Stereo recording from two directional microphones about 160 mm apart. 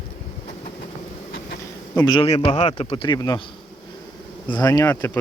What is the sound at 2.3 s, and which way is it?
Speech, 40° left (ahead or behind).